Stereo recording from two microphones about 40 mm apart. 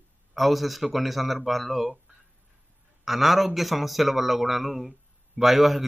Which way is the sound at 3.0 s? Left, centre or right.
Centre.